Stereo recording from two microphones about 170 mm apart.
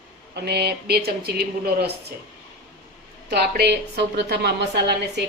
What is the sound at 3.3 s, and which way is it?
A woman's voice, 70° right (ahead or behind).